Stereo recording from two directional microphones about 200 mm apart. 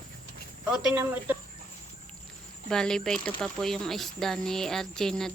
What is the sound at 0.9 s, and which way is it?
Speech, 10° right (ahead or behind).